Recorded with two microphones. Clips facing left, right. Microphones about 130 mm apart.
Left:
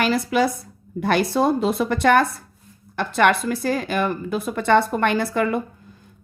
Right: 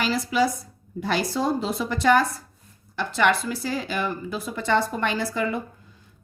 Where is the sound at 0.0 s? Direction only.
60° left (ahead or behind).